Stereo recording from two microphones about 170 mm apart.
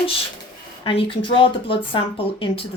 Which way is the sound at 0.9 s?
30° left (ahead or behind).